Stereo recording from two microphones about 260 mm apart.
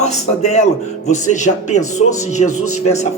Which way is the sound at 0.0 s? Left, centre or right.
Left.